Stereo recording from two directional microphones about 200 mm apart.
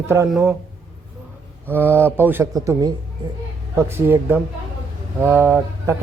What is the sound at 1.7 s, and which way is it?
Speech, 10° right (ahead or behind).